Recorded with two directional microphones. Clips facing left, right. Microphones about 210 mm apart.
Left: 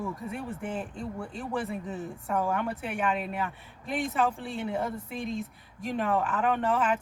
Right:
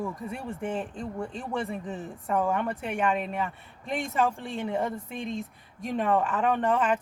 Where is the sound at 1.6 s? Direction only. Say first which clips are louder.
Right 1 dB; centre (ahead or behind).